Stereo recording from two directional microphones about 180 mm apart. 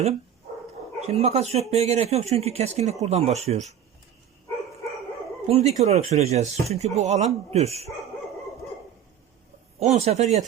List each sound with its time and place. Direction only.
1.0 s speech: 35° right (ahead or behind)
5.5 s speech: 35° right (ahead or behind)
9.8 s speech: 35° right (ahead or behind)